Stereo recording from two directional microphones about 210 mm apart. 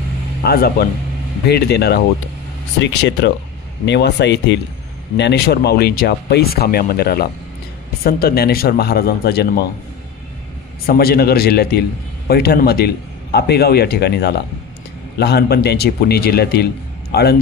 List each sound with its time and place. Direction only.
0.4 s speech: 50° left (ahead or behind)
10.9 s speech: 45° left (ahead or behind)